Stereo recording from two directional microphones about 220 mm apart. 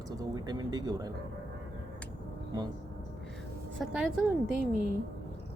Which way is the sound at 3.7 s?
5° right (ahead or behind).